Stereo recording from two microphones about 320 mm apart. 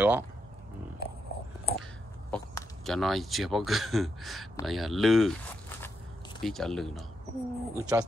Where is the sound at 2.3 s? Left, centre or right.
Centre.